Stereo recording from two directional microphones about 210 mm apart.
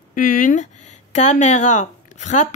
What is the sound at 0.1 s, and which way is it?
Speech, 40° left (ahead or behind).